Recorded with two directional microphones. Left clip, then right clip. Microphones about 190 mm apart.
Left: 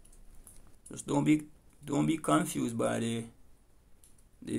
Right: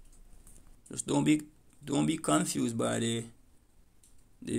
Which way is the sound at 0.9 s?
35° right (ahead or behind).